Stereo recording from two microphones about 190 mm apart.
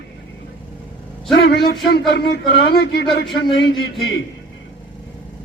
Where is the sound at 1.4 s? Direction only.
60° left (ahead or behind).